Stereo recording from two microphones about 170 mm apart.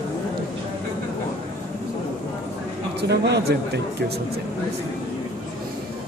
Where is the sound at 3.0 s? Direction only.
75° right (ahead or behind).